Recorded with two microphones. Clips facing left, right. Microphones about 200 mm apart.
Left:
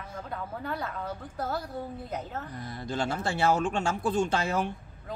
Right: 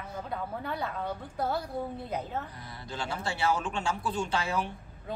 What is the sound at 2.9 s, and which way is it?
Speech, 45° left (ahead or behind).